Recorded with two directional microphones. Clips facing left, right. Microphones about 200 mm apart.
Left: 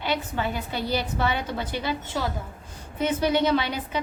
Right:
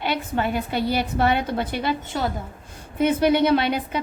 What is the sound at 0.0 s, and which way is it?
A woman's voice, 60° right (ahead or behind).